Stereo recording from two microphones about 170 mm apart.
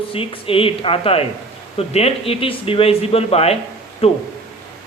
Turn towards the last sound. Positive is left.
turn(degrees=35)  # may be behind; listen again after turning